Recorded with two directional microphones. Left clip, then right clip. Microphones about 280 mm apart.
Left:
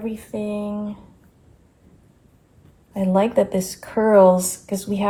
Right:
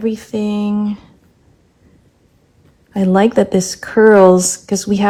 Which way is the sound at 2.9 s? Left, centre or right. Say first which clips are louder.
Right 6 dB; right.